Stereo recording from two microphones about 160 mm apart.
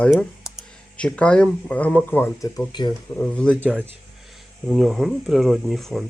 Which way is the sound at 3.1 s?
10° left (ahead or behind).